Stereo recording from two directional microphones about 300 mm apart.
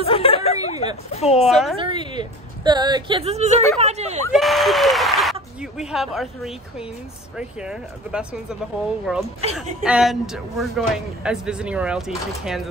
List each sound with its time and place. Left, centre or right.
0.0 s a sound: centre
1.1 s a woman's voice: left
1.4 s speech: centre
1.8 s a woman's voice: centre
4.2 s speech: centre